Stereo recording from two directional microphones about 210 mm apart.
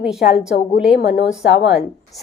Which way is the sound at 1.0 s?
55° left (ahead or behind).